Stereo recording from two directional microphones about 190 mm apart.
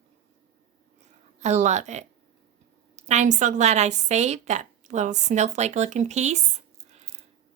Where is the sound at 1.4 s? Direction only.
35° right (ahead or behind).